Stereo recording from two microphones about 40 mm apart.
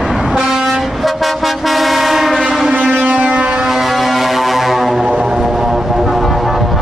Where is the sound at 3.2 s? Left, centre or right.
Right.